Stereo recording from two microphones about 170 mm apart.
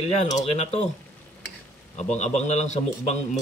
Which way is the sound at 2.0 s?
40° left (ahead or behind).